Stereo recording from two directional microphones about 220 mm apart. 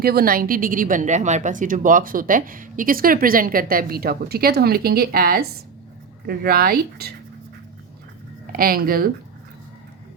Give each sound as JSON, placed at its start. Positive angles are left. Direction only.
{"t": 0.0, "sound": "a woman's voice", "side_deg": -45}
{"t": 8.5, "sound": "speech", "side_deg": -40}